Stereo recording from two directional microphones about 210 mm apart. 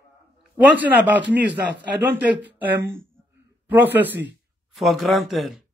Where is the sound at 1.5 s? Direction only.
55° right (ahead or behind).